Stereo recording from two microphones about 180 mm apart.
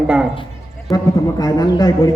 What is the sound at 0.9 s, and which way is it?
Speech, 20° left (ahead or behind).